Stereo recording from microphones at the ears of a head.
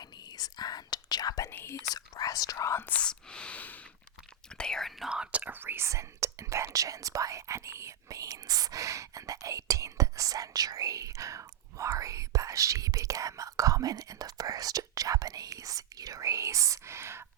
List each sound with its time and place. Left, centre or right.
0.3 s speech: left
4.8 s speech: centre
5.5 s speech: right